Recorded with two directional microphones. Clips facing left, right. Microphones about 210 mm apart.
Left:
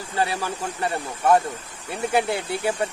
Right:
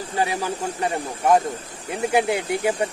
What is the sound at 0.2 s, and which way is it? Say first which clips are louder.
A man's voice: right 1 dB; 15° right (ahead or behind).